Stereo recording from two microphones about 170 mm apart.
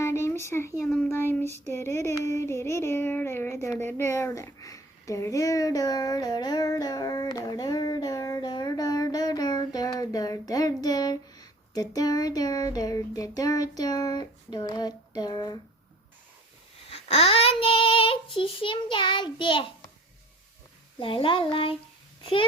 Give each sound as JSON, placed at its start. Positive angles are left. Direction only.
{"t": 0.0, "sound": "a sound", "side_deg": 15}
{"t": 0.9, "sound": "child singing", "side_deg": 5}
{"t": 16.9, "sound": "child singing", "side_deg": 35}
{"t": 21.0, "sound": "child singing", "side_deg": 30}
{"t": 22.2, "sound": "a child's voice", "side_deg": 30}